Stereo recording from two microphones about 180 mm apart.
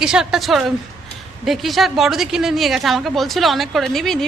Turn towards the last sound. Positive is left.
turn(degrees=0)  # may be behind; listen again after turning